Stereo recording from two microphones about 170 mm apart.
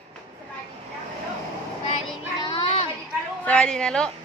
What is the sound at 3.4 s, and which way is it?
Speech, 5° left (ahead or behind).